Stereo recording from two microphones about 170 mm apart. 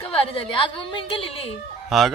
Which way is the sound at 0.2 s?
30° left (ahead or behind).